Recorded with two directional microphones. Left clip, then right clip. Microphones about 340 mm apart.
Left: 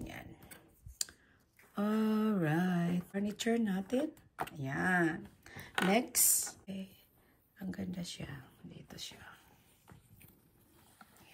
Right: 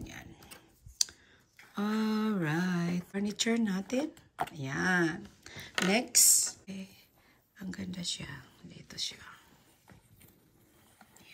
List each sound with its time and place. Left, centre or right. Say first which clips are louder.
0.0 s a sound: even; centre
1.0 s computer keyboard: right 9 dB; centre
1.8 s speech: right 1 dB; centre